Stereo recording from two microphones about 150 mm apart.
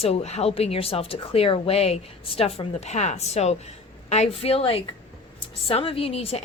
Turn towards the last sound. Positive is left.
turn(degrees=40)  # may be behind; listen again after turning